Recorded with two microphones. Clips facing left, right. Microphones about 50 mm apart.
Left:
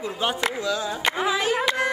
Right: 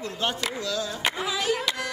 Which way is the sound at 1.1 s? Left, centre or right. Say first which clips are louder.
Left 4 dB; left.